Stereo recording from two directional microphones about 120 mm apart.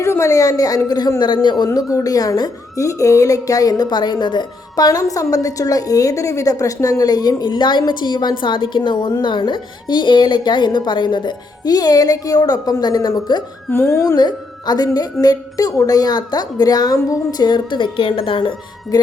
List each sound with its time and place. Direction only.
0.0 s a woman's voice: 25° left (ahead or behind)
13.7 s a woman's voice: 20° left (ahead or behind); by 18.5 s 45° left (ahead or behind)